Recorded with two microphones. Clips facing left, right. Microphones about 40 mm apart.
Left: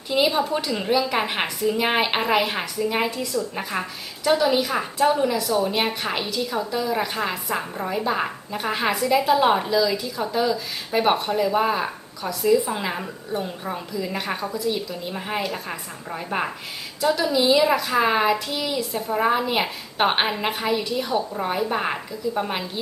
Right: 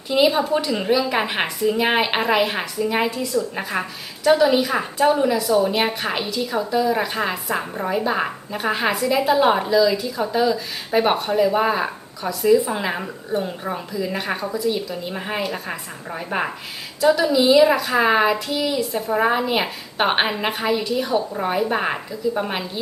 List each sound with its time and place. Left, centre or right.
0.1 s a woman's voice: centre
6.8 s a woman's voice: centre
19.1 s a woman's voice: centre